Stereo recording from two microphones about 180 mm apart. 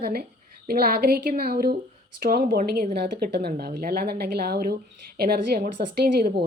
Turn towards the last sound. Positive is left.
turn(degrees=-60)  # may be behind; listen again after turning